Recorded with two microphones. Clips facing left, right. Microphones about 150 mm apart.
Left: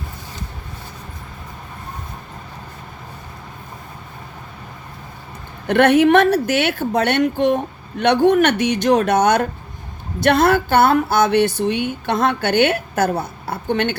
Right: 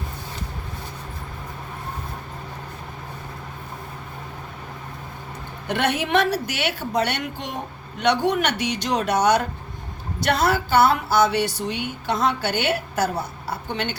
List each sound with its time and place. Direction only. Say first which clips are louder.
5.6 s a woman's voice: left 11 dB; 55° left (ahead or behind)